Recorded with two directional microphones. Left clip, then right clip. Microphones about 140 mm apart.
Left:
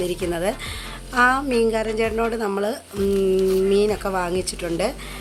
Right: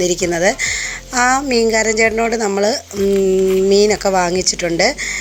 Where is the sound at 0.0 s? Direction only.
30° right (ahead or behind).